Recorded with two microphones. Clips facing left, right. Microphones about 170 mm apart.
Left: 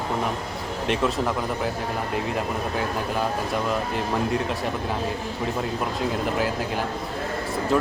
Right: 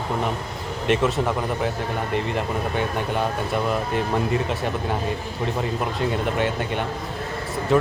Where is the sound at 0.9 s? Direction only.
Centre (ahead or behind).